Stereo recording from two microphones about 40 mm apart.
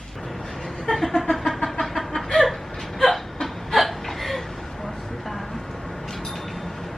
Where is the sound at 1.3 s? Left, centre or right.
Centre.